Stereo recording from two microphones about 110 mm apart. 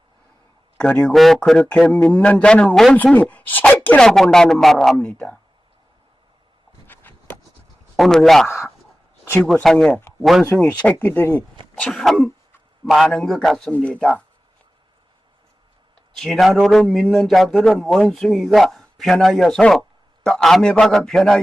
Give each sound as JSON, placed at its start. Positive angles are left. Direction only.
{"t": 0.8, "sound": "a man's voice", "side_deg": 10}
{"t": 6.8, "sound": "a sound", "side_deg": 20}
{"t": 7.9, "sound": "a man's voice", "side_deg": 0}
{"t": 9.6, "sound": "a man's voice", "side_deg": 5}
{"t": 10.6, "sound": "a man's voice", "side_deg": 10}
{"t": 11.8, "sound": "a man's voice", "side_deg": 0}
{"t": 13.7, "sound": "a man's voice", "side_deg": 10}
{"t": 16.1, "sound": "a man's voice", "side_deg": 0}